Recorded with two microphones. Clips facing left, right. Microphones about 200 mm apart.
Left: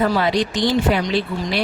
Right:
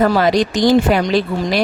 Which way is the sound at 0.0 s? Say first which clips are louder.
Right 5 dB; 45° right (ahead or behind).